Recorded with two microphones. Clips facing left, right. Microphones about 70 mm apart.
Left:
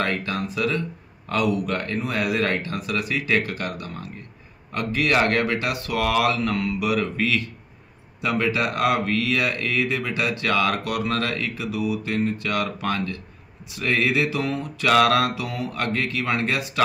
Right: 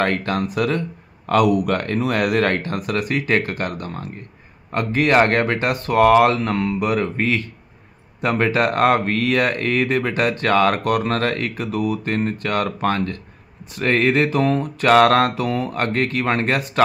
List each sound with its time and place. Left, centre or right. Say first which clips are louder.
0.0 s speech: right 5 dB; right